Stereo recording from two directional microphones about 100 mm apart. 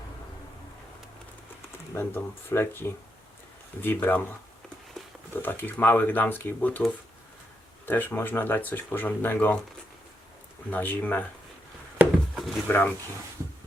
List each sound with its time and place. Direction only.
1.9 s speech: 25° left (ahead or behind)
5.3 s speech: 20° left (ahead or behind)
7.9 s speech: 20° left (ahead or behind)
10.7 s speech: 20° left (ahead or behind)
11.9 s a sound: 10° right (ahead or behind)
12.6 s speech: 20° left (ahead or behind)